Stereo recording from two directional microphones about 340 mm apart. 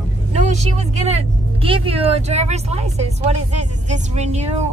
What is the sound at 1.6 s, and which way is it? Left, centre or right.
Speech, centre.